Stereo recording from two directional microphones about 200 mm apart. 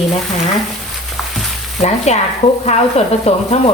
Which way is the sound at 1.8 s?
35° left (ahead or behind).